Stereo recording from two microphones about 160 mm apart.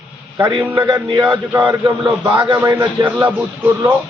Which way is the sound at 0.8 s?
25° right (ahead or behind).